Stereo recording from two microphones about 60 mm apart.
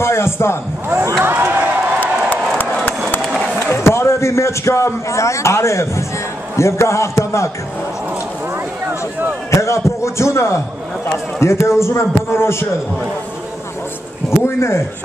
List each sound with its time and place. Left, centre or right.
0.0 s a man's voice: left
0.8 s speech: right
1.2 s a sound: right
3.5 s a man's voice: left
9.5 s a sound: left
11.1 s a man's voice: left
14.4 s a man's voice: left